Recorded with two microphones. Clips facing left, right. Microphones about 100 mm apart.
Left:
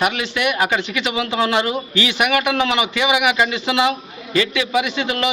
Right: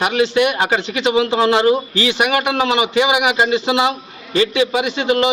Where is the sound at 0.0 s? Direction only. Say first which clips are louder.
Right 5 dB; 30° right (ahead or behind).